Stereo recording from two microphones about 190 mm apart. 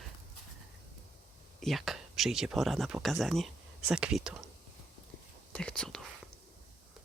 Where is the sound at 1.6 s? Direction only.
Centre (ahead or behind).